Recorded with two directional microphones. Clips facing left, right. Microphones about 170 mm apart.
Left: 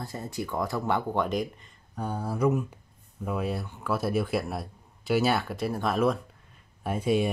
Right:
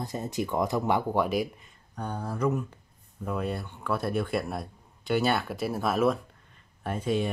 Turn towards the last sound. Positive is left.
turn(degrees=10)  # may be behind; listen again after turning